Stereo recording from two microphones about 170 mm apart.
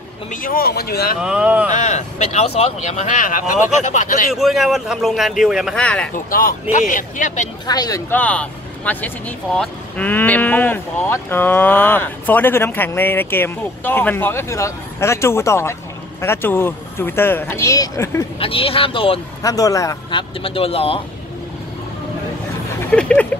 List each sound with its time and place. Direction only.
0.3 s speech: 55° left (ahead or behind)
1.2 s a man's voice: 5° right (ahead or behind)
1.7 s speech: 45° left (ahead or behind)
4.3 s a man's voice: centre (ahead or behind)
6.1 s speech: 55° left (ahead or behind)
7.6 s speech: 25° left (ahead or behind)
8.1 s speech: 10° left (ahead or behind)
18.4 s speech: 35° left (ahead or behind)
19.4 s speech: 20° left (ahead or behind)
22.8 s speech: 5° left (ahead or behind)